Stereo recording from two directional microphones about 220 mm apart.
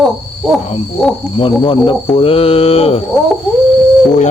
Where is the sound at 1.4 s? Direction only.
25° left (ahead or behind).